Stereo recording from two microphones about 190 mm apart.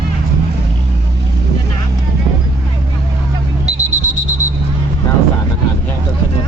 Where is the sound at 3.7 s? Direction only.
35° right (ahead or behind).